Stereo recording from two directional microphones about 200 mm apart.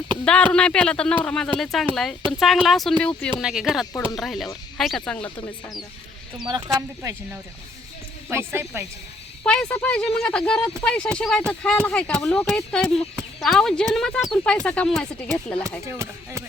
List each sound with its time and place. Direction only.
0.3 s speech: 5° left (ahead or behind)
6.4 s speech: 20° right (ahead or behind)
8.5 s speech: 10° right (ahead or behind)
9.4 s speech: 5° left (ahead or behind)
15.9 s speech: 15° right (ahead or behind)